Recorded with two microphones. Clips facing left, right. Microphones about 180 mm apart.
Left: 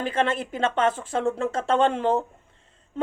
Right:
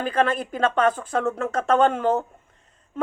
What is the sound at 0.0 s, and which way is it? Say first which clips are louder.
A woman's voice: right 2 dB; 25° left (ahead or behind).